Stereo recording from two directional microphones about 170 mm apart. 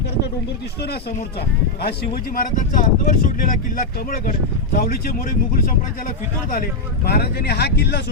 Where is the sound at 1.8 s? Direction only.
55° left (ahead or behind).